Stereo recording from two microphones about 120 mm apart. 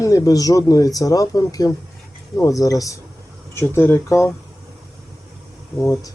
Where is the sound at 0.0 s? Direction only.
30° left (ahead or behind).